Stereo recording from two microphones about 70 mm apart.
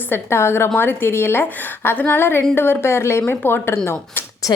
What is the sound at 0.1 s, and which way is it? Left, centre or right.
A woman's voice, left.